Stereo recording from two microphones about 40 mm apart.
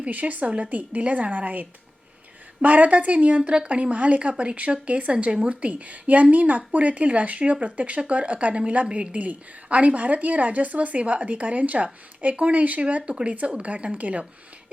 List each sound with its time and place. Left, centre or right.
0.0 s speech: right